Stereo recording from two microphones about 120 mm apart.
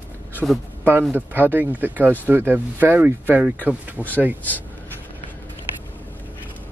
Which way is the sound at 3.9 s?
15° left (ahead or behind).